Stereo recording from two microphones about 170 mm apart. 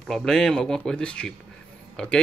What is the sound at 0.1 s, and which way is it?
A man's voice, centre (ahead or behind).